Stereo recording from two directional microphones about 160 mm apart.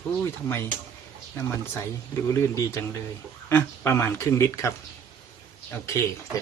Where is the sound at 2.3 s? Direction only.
15° left (ahead or behind).